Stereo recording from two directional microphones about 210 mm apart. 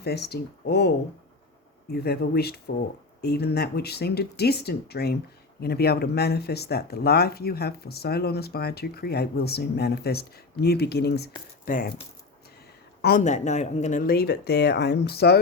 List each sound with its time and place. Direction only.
0.0 s speech: 50° left (ahead or behind)
13.0 s speech: 50° left (ahead or behind)
13.2 s speech: 35° left (ahead or behind); by 15.4 s 50° left (ahead or behind)